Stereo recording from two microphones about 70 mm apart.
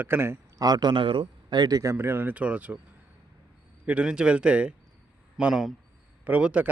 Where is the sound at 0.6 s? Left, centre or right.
Right.